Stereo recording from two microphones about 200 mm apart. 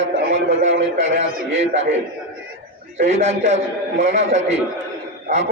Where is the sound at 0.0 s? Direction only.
65° right (ahead or behind).